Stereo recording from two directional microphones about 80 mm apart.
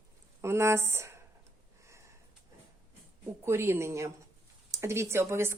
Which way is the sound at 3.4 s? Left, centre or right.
Right.